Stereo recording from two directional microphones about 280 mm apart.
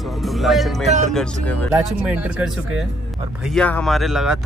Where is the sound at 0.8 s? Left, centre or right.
Right.